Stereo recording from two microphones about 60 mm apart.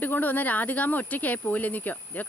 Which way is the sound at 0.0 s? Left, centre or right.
Left.